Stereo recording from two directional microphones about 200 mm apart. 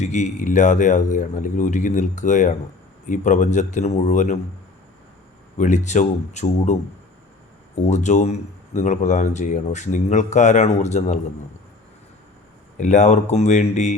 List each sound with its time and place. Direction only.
0.0 s speech: 35° left (ahead or behind)
5.5 s speech: 40° left (ahead or behind)
7.8 s speech: 35° left (ahead or behind)
12.8 s speech: 35° left (ahead or behind)